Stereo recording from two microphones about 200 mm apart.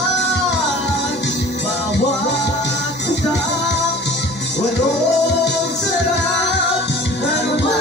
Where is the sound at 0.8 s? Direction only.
60° left (ahead or behind).